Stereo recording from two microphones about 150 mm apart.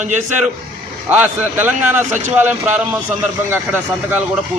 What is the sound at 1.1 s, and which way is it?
Speech, 10° right (ahead or behind).